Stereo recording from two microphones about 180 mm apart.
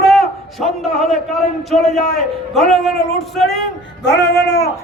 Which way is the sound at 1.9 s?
40° left (ahead or behind).